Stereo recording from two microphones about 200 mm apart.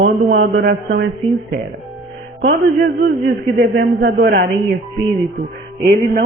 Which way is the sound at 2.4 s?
60° right (ahead or behind).